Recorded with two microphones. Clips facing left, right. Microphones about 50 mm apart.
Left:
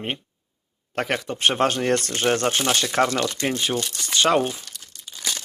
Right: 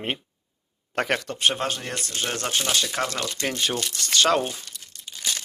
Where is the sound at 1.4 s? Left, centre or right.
Left.